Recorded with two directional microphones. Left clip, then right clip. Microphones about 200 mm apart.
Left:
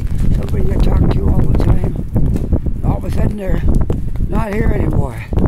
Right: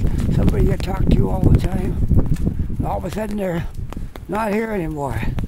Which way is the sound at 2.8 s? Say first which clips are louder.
Right 1 dB; 10° right (ahead or behind).